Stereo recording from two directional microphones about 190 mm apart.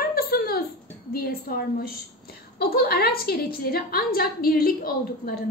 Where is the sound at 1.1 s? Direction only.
50° left (ahead or behind).